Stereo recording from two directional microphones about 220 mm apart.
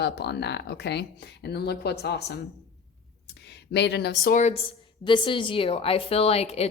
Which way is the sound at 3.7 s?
50° left (ahead or behind).